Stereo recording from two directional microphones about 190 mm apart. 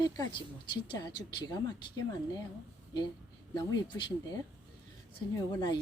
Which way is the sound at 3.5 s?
25° left (ahead or behind).